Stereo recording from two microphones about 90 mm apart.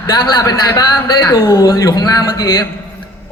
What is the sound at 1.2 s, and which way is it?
Speech, 30° left (ahead or behind).